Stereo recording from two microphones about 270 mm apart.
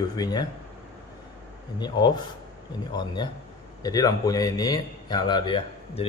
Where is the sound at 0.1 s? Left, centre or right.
Centre.